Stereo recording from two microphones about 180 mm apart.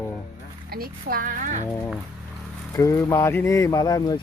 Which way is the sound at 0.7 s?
55° right (ahead or behind).